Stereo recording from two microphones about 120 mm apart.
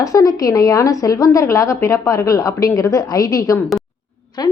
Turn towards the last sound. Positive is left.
turn(degrees=35)  # may be behind; listen again after turning